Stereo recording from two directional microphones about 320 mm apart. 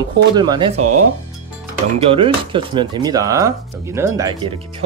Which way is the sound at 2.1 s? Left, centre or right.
Centre.